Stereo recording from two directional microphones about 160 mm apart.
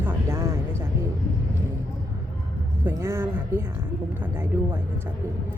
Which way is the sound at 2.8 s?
15° right (ahead or behind).